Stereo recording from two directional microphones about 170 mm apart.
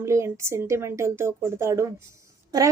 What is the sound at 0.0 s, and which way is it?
A woman's voice, 15° right (ahead or behind).